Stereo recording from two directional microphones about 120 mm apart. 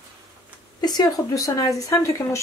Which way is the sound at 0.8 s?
35° left (ahead or behind).